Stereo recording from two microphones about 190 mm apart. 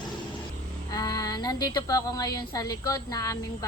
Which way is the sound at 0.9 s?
20° left (ahead or behind).